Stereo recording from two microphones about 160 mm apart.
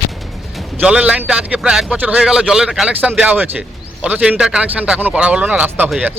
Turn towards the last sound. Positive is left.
turn(degrees=-10)  # may be behind; listen again after turning